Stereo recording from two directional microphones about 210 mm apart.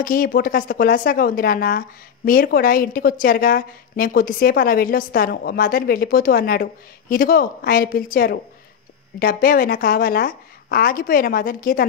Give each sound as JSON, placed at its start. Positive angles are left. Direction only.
{"t": 0.0, "sound": "speech", "side_deg": 40}